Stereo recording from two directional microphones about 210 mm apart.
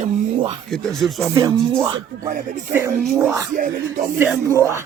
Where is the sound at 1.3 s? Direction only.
15° right (ahead or behind).